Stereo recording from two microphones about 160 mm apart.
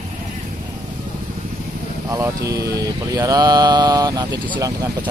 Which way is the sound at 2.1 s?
20° right (ahead or behind).